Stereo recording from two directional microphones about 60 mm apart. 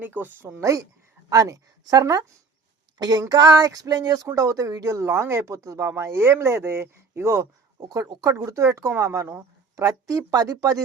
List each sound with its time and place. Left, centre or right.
0.0 s speech: right
0.6 s speech: right
1.3 s a sound: right
4.4 s speech: right
7.8 s speech: right
9.7 s speech: right